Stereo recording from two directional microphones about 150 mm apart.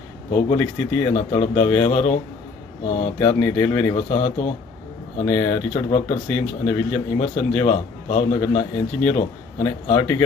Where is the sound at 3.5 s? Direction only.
10° left (ahead or behind).